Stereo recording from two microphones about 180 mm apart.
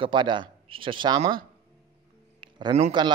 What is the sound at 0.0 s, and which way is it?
Speech, 25° right (ahead or behind).